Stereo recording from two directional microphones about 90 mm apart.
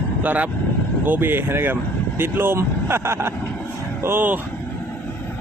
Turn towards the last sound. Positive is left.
turn(degrees=-25)  # may be behind; listen again after turning